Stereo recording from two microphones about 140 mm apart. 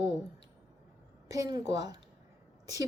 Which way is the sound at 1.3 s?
25° right (ahead or behind).